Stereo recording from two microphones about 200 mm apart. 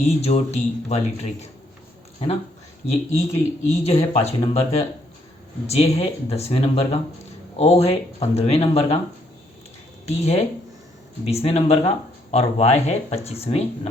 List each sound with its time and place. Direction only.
0.0 s speech: 30° left (ahead or behind)
2.8 s speech: 30° left (ahead or behind)
10.1 s speech: 30° left (ahead or behind)